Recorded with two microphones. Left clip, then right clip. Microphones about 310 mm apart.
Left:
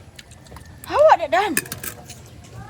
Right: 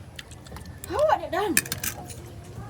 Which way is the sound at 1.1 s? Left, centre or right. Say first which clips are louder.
Left 8 dB; centre.